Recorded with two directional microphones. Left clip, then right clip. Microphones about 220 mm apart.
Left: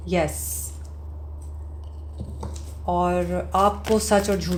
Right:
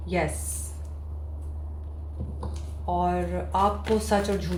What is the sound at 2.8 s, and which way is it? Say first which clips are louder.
Speech: left 4 dB; 50° left (ahead or behind).